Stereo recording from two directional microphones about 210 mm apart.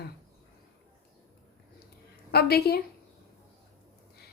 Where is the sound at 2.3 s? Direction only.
50° left (ahead or behind).